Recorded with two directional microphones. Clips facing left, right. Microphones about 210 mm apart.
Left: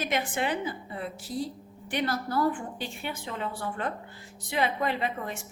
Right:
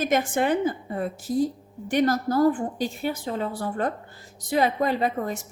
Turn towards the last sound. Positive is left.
turn(degrees=-40)  # may be behind; listen again after turning